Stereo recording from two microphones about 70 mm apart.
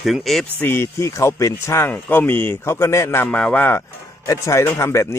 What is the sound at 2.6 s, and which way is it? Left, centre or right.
Speech, left.